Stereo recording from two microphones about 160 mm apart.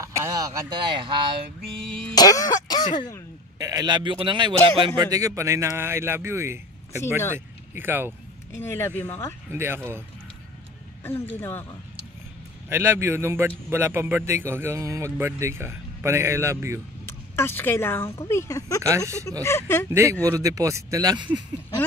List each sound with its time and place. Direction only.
0.0 s speech: 20° right (ahead or behind)
2.1 s speech: 20° left (ahead or behind)
3.5 s a man's voice: 25° right (ahead or behind)
8.5 s speech: 15° left (ahead or behind)
9.5 s a man's voice: 15° right (ahead or behind)
11.1 s speech: 15° left (ahead or behind)
12.6 s a man's voice: 15° right (ahead or behind)
17.0 s speech: 15° left (ahead or behind)
18.8 s a man's voice: 20° right (ahead or behind)
19.4 s speech: 15° left (ahead or behind)
19.9 s a man's voice: 15° right (ahead or behind)